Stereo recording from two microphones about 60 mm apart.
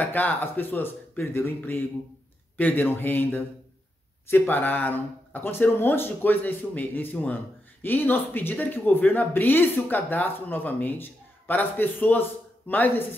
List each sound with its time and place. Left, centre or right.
0.0 s speech: left